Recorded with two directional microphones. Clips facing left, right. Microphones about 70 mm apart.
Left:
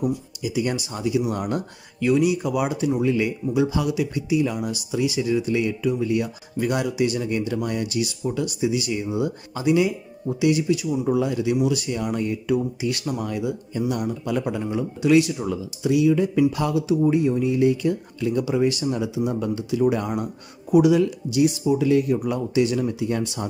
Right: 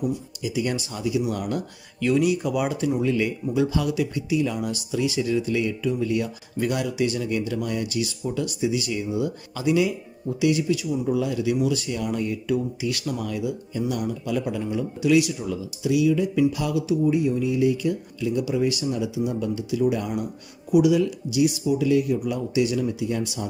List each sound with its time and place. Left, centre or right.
0.9 s speech: left
2.0 s speech: centre; by 11.5 s left
11.5 s speech: centre; by 23.5 s left